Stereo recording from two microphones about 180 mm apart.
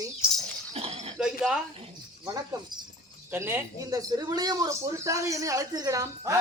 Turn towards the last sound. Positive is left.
turn(degrees=-15)  # may be behind; listen again after turning